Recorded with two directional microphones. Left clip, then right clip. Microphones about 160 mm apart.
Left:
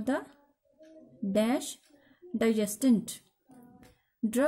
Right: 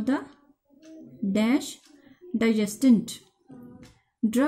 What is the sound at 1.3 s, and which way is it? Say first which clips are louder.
Speech: right 3 dB; 35° left (ahead or behind).